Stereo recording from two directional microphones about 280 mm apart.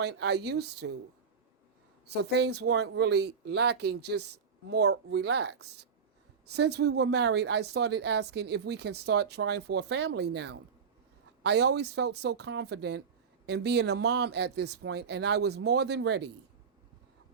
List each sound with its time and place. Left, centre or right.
0.0 s a woman's voice: right
2.3 s a woman's voice: right